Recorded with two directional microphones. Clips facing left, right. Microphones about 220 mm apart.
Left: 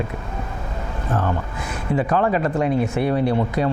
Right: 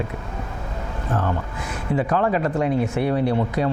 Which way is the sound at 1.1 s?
25° left (ahead or behind).